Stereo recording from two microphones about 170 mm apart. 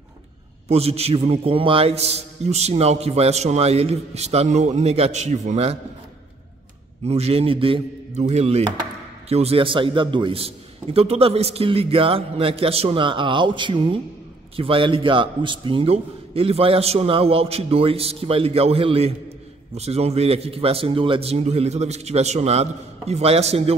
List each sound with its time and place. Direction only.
0.7 s a man's voice: 35° right (ahead or behind)
7.1 s a man's voice: 35° right (ahead or behind)